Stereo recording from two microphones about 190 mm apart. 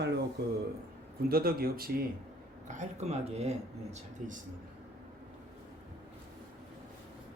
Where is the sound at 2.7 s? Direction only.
35° right (ahead or behind).